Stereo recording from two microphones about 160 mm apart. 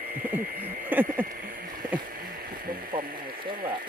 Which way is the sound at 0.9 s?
10° right (ahead or behind).